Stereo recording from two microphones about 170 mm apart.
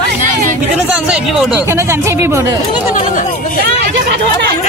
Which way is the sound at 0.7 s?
5° right (ahead or behind).